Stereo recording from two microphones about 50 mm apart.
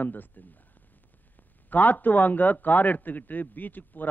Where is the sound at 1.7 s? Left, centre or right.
Left.